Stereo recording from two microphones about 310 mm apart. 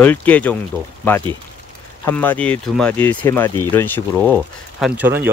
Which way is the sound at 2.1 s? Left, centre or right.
Centre.